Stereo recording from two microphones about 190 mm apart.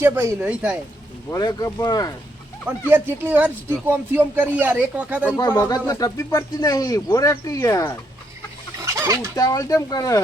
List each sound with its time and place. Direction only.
0.0 s speech: 15° right (ahead or behind)
1.3 s speech: 20° left (ahead or behind)
2.9 s speech: 10° right (ahead or behind)
5.4 s speech: 20° left (ahead or behind)
8.8 s a sound: 15° right (ahead or behind)
9.3 s speech: 20° left (ahead or behind)